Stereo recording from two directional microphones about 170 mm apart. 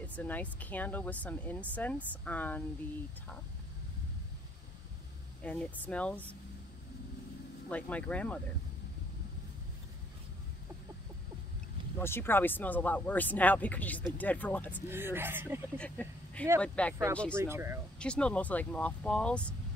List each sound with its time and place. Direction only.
0.0 s speech: 10° left (ahead or behind)
5.4 s speech: 10° left (ahead or behind)
7.7 s speech: 10° left (ahead or behind)
12.0 s speech: 15° left (ahead or behind)
14.9 s speech: 15° right (ahead or behind)
15.8 s speech: 10° left (ahead or behind)
17.4 s speech: 15° right (ahead or behind)
17.9 s speech: 5° left (ahead or behind)